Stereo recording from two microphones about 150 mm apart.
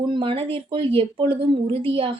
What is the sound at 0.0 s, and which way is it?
A woman's voice, 30° right (ahead or behind).